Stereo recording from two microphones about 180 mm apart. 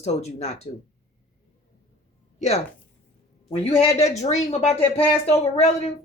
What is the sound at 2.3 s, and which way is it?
A man's voice, 40° left (ahead or behind).